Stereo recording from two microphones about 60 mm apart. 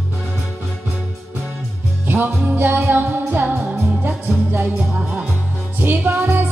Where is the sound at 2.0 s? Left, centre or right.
Right.